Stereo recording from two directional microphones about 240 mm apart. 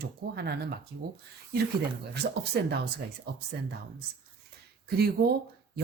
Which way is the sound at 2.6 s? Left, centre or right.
Right.